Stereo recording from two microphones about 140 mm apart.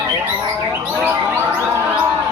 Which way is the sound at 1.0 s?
15° right (ahead or behind).